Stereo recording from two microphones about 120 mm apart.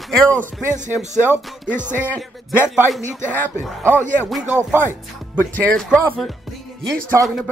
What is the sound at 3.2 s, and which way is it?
Speech, 15° left (ahead or behind).